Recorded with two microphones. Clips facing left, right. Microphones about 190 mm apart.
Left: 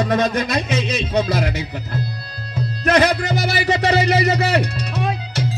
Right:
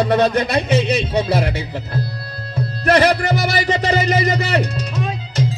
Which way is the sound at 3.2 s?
60° right (ahead or behind).